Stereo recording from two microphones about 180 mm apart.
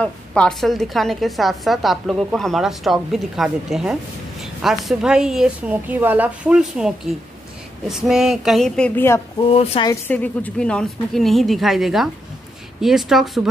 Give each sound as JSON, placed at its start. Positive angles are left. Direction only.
{"t": 0.0, "sound": "a woman's voice", "side_deg": 5}
{"t": 7.9, "sound": "a woman's voice", "side_deg": -5}
{"t": 9.4, "sound": "speech", "side_deg": 35}
{"t": 9.8, "sound": "a woman's voice", "side_deg": 10}